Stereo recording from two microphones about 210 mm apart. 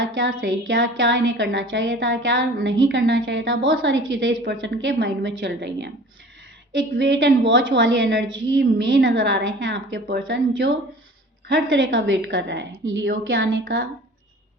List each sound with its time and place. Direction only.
0.1 s a woman's voice: 65° right (ahead or behind)